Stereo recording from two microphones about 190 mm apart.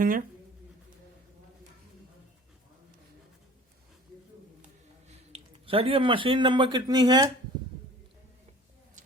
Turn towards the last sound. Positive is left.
turn(degrees=-20)  # may be behind; listen again after turning